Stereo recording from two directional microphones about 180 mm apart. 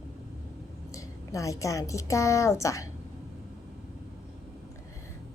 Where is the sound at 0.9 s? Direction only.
15° left (ahead or behind).